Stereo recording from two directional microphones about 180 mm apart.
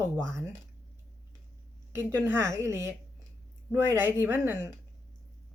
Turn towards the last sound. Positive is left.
turn(degrees=-10)  # may be behind; listen again after turning